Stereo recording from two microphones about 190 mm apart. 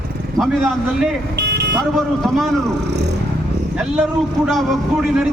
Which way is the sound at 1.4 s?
60° right (ahead or behind).